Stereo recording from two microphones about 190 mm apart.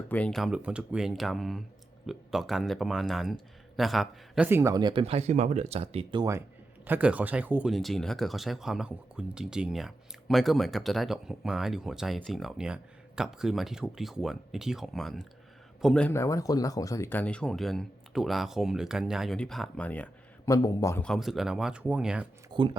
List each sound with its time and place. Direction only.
0.1 s speech: 5° left (ahead or behind); by 6.4 s 20° right (ahead or behind)
6.8 s speech: 10° right (ahead or behind); by 21.0 s 20° left (ahead or behind)
21.0 s speech: centre (ahead or behind)
22.5 s speech: 25° right (ahead or behind)